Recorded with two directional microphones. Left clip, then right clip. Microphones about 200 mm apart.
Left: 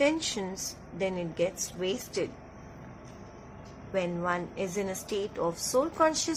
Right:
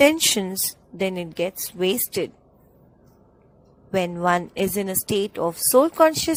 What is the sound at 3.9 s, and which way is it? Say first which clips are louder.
A woman's voice: right 9 dB; 55° right (ahead or behind).